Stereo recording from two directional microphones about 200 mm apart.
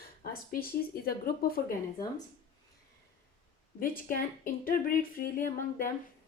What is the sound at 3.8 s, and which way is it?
Speech, 45° left (ahead or behind).